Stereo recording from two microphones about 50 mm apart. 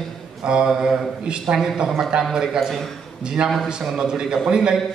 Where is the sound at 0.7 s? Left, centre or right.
Centre.